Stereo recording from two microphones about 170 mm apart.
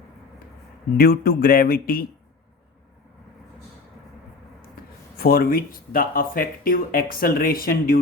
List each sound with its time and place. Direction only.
0.9 s speech: 60° left (ahead or behind)
5.1 s speech: 60° left (ahead or behind)